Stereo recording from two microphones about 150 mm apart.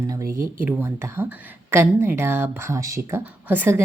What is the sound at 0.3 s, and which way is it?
Speech, 15° right (ahead or behind).